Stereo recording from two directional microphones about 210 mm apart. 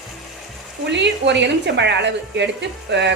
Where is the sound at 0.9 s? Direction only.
55° right (ahead or behind).